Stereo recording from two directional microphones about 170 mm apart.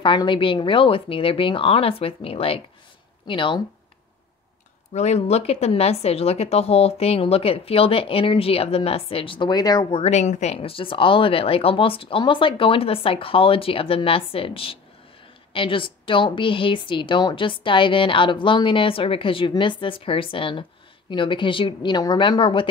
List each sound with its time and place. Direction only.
0.0 s a woman's voice: 30° left (ahead or behind)
4.9 s a woman's voice: 40° left (ahead or behind)